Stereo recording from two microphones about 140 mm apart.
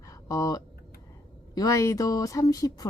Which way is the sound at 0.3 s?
25° left (ahead or behind).